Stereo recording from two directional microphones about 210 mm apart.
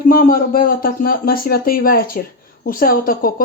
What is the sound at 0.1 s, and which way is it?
Speech, 45° left (ahead or behind).